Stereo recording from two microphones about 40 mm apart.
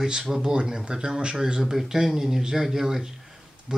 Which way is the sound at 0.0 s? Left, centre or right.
Centre.